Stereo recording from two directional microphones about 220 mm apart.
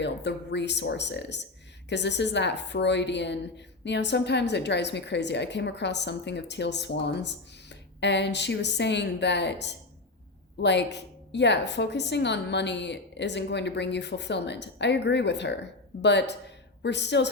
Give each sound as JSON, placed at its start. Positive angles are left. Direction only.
{"t": 0.0, "sound": "a woman's voice", "side_deg": 50}